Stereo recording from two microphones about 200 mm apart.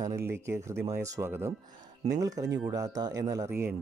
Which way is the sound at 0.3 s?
10° right (ahead or behind).